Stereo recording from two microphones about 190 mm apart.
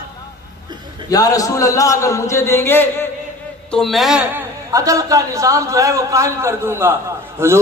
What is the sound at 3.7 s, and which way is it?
Speech, centre (ahead or behind).